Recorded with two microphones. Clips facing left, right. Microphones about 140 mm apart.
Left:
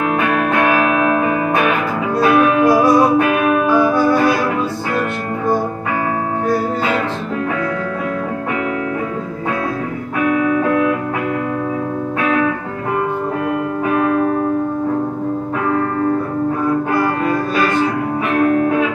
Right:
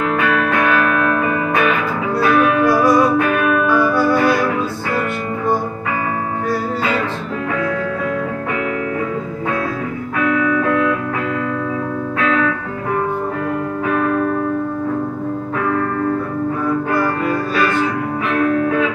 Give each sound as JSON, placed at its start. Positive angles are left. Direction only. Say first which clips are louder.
{"t": 0.0, "sound": "music", "louder": "left 1 dB", "side_deg": 50}
{"t": 2.1, "sound": "music", "louder": "left 2 dB", "side_deg": 20}
{"t": 10.2, "sound": "music", "louder": "left 1 dB", "side_deg": 20}
{"t": 12.2, "sound": "music", "louder": "left 1 dB", "side_deg": 15}